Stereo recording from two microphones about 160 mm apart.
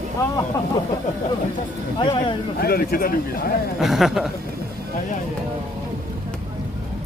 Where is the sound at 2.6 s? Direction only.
70° left (ahead or behind).